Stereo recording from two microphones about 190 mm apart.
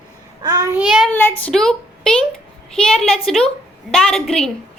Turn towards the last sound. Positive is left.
turn(degrees=0)  # may be behind; listen again after turning